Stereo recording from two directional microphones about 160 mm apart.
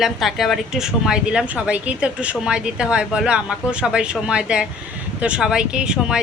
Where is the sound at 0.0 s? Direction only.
Centre (ahead or behind).